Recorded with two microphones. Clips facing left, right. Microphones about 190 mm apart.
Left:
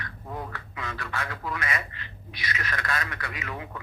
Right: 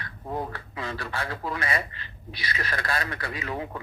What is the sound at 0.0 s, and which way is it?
A man's voice, 30° right (ahead or behind).